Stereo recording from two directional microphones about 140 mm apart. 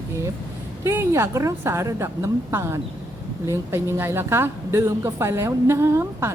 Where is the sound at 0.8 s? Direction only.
20° right (ahead or behind).